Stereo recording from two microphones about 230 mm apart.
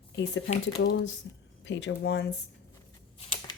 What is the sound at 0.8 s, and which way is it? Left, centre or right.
A woman's voice, left.